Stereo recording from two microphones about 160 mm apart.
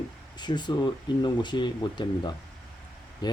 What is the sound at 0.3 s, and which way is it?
Speech, 30° left (ahead or behind).